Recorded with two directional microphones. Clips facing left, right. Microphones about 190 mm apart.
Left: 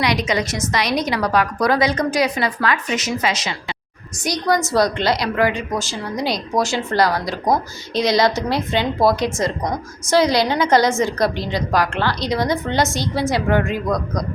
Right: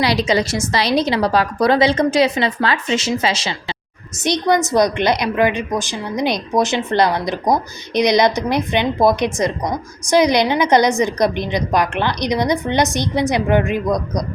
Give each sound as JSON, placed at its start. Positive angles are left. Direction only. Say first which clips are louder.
{"t": 0.0, "sound": "a woman's voice", "louder": "right 3 dB", "side_deg": -30}